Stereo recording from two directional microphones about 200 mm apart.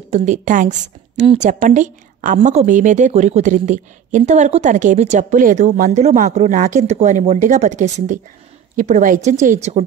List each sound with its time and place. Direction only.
0.1 s a woman's voice: 35° right (ahead or behind)